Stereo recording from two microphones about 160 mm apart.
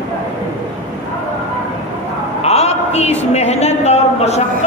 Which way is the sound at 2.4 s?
40° left (ahead or behind).